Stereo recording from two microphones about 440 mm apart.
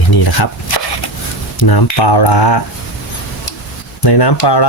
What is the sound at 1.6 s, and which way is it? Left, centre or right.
Speech, left.